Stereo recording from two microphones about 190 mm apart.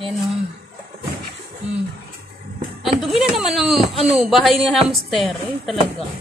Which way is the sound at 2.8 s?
Centre (ahead or behind).